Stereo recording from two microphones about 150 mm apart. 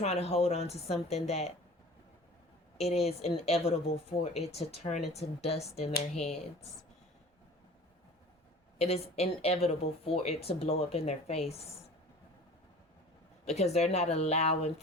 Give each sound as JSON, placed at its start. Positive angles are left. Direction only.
{"t": 0.0, "sound": "speech", "side_deg": 45}
{"t": 2.7, "sound": "speech", "side_deg": 45}
{"t": 8.8, "sound": "speech", "side_deg": 45}
{"t": 13.4, "sound": "speech", "side_deg": 45}